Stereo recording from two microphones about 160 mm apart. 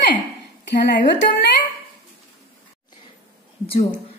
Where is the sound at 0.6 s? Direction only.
90° left.